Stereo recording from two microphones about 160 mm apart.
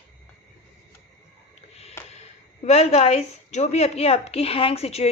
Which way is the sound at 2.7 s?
40° left (ahead or behind).